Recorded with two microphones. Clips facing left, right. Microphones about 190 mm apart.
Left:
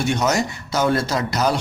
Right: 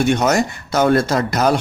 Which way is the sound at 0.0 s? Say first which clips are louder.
Right 4 dB; 55° right (ahead or behind).